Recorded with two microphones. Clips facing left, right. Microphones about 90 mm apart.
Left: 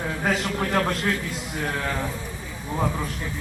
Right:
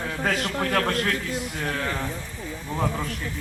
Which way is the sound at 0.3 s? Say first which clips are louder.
Left 1 dB; 15° left (ahead or behind).